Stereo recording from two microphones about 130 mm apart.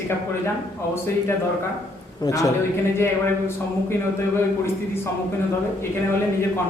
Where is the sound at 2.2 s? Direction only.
25° left (ahead or behind).